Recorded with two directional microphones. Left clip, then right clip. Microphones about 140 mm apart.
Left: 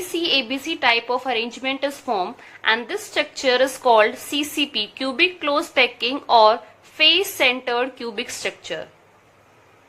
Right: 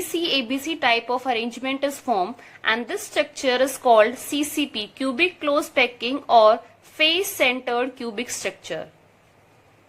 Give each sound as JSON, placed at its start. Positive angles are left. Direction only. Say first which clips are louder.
{"t": 0.1, "sound": "a woman's voice", "louder": "left 3 dB", "side_deg": -35}